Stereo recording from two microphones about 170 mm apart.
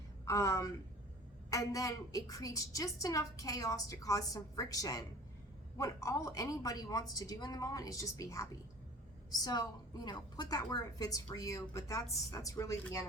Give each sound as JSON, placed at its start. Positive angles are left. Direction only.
{"t": 0.3, "sound": "a woman's voice", "side_deg": 20}